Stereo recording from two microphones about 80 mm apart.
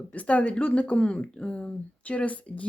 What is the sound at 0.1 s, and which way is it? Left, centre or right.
Speech, centre.